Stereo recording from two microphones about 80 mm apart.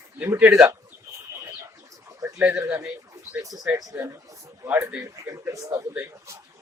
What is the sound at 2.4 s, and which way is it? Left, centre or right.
Speech, centre.